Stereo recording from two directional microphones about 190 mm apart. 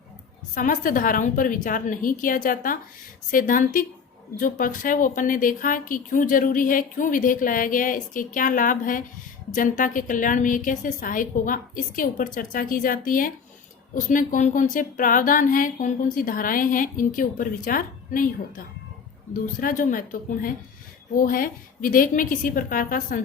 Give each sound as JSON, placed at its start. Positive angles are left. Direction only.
{"t": 0.5, "sound": "a woman's voice", "side_deg": 45}